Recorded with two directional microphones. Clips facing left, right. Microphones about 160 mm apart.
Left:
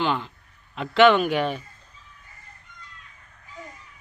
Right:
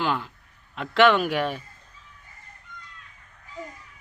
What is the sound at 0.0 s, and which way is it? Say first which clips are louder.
Speech: left 1 dB; centre (ahead or behind).